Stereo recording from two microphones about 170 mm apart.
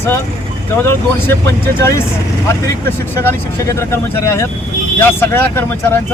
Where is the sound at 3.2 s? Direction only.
15° left (ahead or behind).